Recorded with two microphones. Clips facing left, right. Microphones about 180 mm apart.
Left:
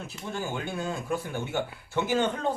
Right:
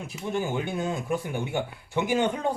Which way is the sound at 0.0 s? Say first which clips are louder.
Right 5 dB; 15° right (ahead or behind).